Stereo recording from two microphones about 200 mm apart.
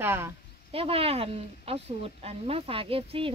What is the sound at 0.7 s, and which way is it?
Speech, 30° right (ahead or behind).